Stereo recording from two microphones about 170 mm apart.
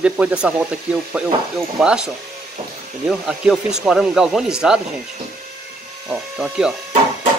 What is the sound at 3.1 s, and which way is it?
Speech, 5° right (ahead or behind).